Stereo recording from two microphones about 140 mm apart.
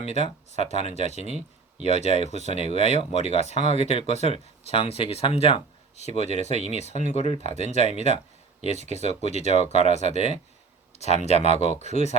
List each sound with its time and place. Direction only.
0.0 s speech: 50° left (ahead or behind)